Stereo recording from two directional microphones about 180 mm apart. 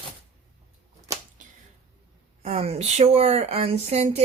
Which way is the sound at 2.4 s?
35° right (ahead or behind).